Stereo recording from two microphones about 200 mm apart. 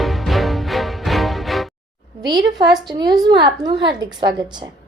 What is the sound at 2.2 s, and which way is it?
A woman's voice, 20° right (ahead or behind).